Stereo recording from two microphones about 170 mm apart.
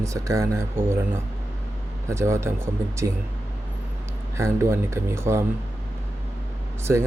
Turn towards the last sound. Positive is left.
turn(degrees=-15)  # may be behind; listen again after turning